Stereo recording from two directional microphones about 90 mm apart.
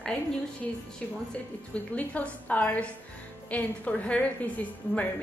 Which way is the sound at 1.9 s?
15° left (ahead or behind).